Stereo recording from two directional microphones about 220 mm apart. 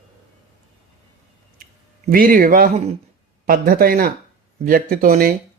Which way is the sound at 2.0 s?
40° right (ahead or behind).